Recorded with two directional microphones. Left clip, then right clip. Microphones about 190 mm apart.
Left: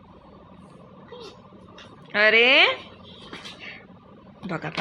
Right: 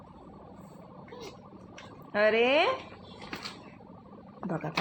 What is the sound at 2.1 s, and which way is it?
Speech, centre (ahead or behind).